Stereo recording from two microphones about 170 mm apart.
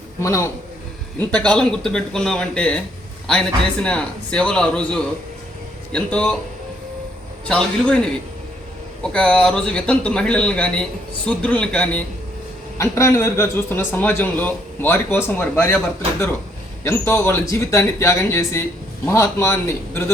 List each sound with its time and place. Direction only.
0.2 s a man's voice: 20° left (ahead or behind)
1.2 s a man's voice: 5° left (ahead or behind)
7.4 s a man's voice: 5° left (ahead or behind)
9.0 s a man's voice: 5° left (ahead or behind)
16.8 s a man's voice: 15° left (ahead or behind)